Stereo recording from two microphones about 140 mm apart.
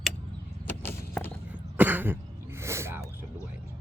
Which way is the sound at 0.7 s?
15° left (ahead or behind).